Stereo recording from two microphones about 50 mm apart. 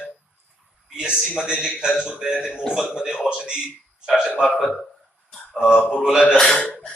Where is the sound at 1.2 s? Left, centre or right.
Centre.